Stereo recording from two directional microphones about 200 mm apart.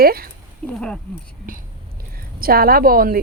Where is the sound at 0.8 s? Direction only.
5° left (ahead or behind).